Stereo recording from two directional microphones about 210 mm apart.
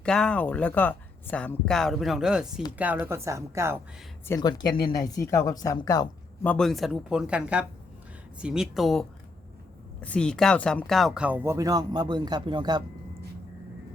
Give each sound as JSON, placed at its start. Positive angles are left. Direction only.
{"t": 0.0, "sound": "speech", "side_deg": 5}
{"t": 4.3, "sound": "speech", "side_deg": 20}
{"t": 6.4, "sound": "speech", "side_deg": 5}